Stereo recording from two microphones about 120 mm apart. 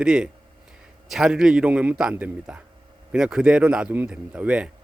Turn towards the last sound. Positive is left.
turn(degrees=-10)  # may be behind; listen again after turning